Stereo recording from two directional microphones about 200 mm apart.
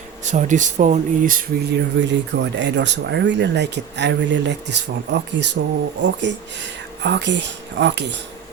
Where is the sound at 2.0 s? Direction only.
65° right (ahead or behind).